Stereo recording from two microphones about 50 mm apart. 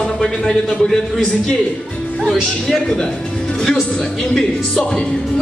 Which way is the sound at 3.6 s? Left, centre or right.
Centre.